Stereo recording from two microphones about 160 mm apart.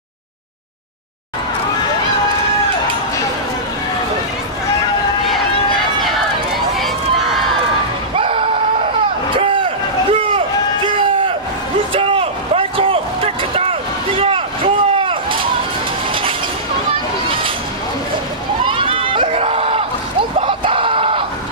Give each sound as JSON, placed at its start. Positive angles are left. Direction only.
{"t": 6.8, "sound": "run", "side_deg": 0}
{"t": 8.2, "sound": "music", "side_deg": -35}
{"t": 9.4, "sound": "vehicle", "side_deg": -35}
{"t": 10.1, "sound": "crowd", "side_deg": -35}
{"t": 11.9, "sound": "a sound", "side_deg": -35}
{"t": 18.6, "sound": "a sound", "side_deg": -30}